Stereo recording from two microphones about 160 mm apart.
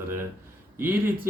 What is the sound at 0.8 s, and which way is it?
Speech, 15° right (ahead or behind).